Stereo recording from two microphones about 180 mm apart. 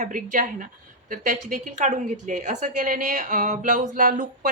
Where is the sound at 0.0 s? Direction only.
45° right (ahead or behind).